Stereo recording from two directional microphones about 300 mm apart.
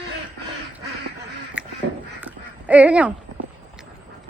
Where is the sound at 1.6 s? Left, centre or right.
Centre.